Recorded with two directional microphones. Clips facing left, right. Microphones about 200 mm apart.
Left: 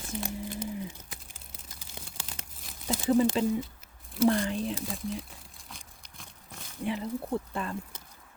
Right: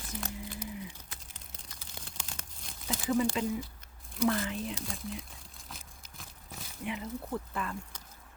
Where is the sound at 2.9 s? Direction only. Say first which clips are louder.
Left 5 dB; 35° left (ahead or behind).